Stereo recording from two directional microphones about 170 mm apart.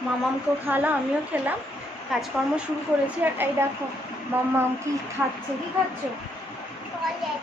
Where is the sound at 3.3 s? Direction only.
10° right (ahead or behind).